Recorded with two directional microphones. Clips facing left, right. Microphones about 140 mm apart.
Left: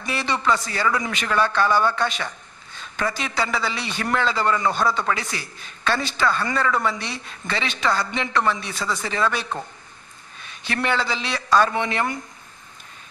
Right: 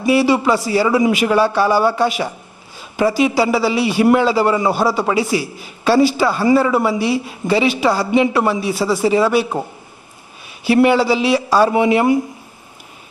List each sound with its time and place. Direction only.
0.0 s a man's voice: 10° right (ahead or behind)
4.8 s speech: 25° right (ahead or behind)
5.1 s a man's voice: 5° right (ahead or behind)